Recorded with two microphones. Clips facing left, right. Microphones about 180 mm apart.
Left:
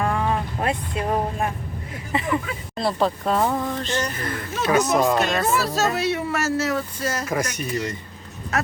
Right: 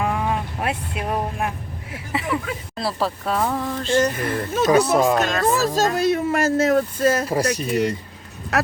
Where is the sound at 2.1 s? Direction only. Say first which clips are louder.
Even; 5° right (ahead or behind).